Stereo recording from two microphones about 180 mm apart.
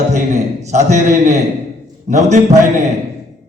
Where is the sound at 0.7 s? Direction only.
40° right (ahead or behind).